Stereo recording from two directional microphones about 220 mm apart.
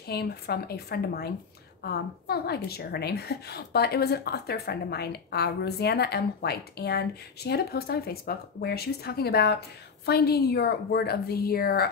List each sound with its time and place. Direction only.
0.0 s a woman's voice: 45° left (ahead or behind)